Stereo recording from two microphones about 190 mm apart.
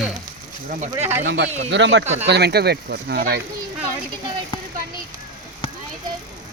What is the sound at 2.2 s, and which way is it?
Speech, 60° right (ahead or behind).